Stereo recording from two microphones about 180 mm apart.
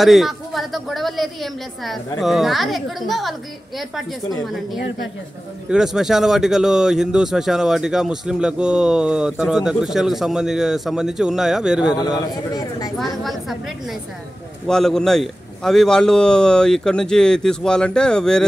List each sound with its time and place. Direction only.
0.0 s speech: centre (ahead or behind)
5.7 s speech: 5° right (ahead or behind)
12.5 s speech: 20° left (ahead or behind)
13.2 s speech: centre (ahead or behind)
14.7 s speech: 5° left (ahead or behind)